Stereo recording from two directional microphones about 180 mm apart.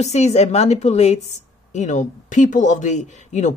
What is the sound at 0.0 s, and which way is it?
A woman's voice, 35° left (ahead or behind).